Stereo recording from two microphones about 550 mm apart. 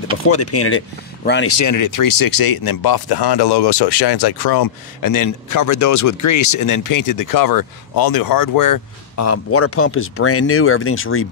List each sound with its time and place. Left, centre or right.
0.3 s speech: left